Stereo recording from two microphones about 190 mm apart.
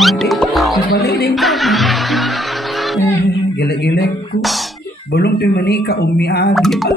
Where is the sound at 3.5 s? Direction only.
55° left (ahead or behind).